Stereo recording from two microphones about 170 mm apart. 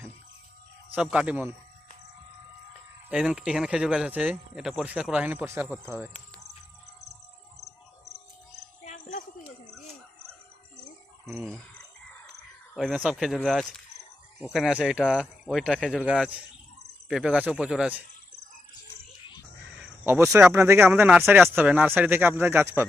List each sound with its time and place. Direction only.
0.9 s speech: 5° right (ahead or behind)
3.1 s speech: 5° right (ahead or behind)
8.8 s cricket: 45° left (ahead or behind)
12.7 s speech: 5° right (ahead or behind)
19.7 s caw: 10° right (ahead or behind)
20.5 s speech: 15° right (ahead or behind)